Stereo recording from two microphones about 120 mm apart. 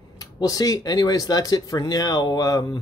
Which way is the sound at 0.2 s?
30° left (ahead or behind).